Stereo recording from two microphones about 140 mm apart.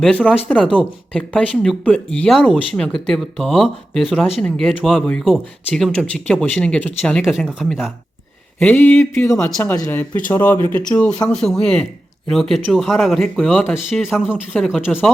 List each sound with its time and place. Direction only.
0.0 s speech: 10° left (ahead or behind)
8.5 s speech: 10° left (ahead or behind)
13.7 s speech: centre (ahead or behind)